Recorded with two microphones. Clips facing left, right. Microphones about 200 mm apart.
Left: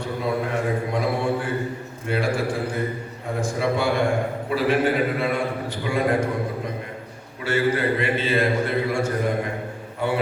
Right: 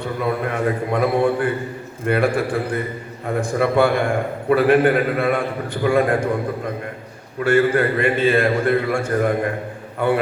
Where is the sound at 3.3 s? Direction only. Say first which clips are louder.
Right 5 dB; 55° right (ahead or behind).